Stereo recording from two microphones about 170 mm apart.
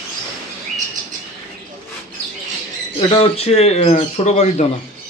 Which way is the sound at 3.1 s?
35° left (ahead or behind).